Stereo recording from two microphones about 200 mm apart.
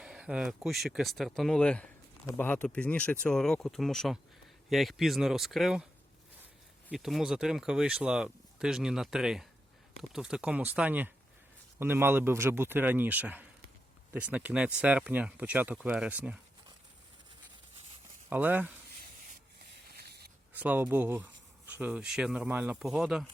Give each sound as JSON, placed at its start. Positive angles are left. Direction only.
{"t": 0.0, "sound": "speech", "side_deg": -5}
{"t": 18.3, "sound": "speech", "side_deg": -10}
{"t": 20.1, "sound": "a sound", "side_deg": -55}
{"t": 20.5, "sound": "speech", "side_deg": -10}